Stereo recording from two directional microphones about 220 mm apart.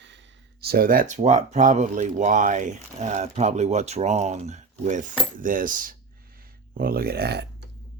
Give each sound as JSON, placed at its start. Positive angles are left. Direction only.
{"t": 0.7, "sound": "speech", "side_deg": -40}